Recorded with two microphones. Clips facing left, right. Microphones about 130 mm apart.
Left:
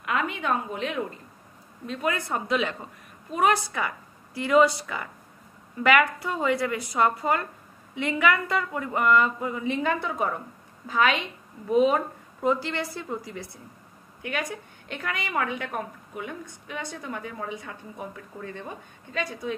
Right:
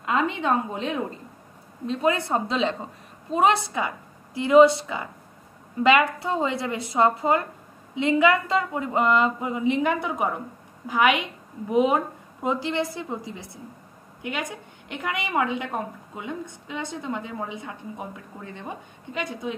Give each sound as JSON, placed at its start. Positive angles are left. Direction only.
{"t": 0.0, "sound": "a woman's voice", "side_deg": -25}